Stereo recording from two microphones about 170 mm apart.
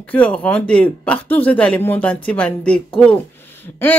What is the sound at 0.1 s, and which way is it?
Speech, 10° left (ahead or behind).